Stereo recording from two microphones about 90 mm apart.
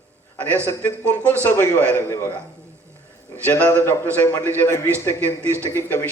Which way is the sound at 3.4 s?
20° left (ahead or behind).